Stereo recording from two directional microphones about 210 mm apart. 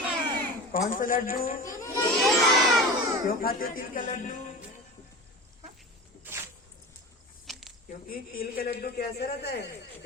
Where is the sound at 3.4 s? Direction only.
45° left (ahead or behind).